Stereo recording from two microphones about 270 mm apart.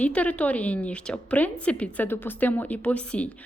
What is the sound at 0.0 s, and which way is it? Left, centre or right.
A woman's voice, centre.